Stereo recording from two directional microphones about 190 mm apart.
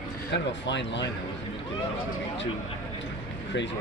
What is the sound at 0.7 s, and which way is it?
Speech, 70° left (ahead or behind).